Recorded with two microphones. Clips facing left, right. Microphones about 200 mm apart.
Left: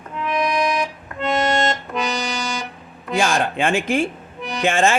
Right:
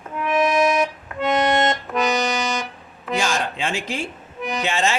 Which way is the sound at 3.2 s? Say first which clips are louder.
Left 5 dB; 55° left (ahead or behind).